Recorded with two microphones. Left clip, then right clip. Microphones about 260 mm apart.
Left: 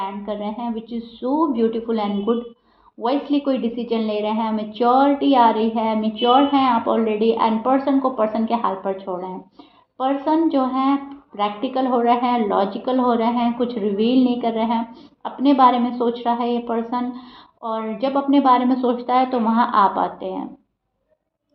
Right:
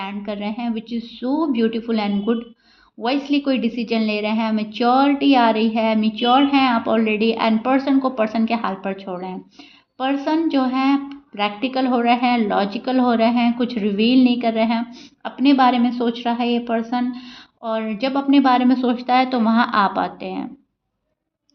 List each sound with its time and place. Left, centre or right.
0.0 s a woman's voice: right